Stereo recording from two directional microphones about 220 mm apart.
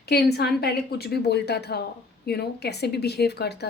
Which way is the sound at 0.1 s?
45° left (ahead or behind).